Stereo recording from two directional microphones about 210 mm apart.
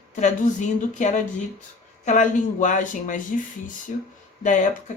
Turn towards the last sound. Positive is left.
turn(degrees=35)  # may be behind; listen again after turning